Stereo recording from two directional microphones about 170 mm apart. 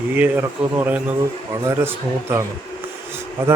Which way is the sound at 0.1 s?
10° right (ahead or behind).